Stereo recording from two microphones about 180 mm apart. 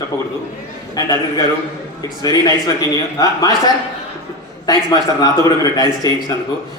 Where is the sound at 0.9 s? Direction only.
20° left (ahead or behind).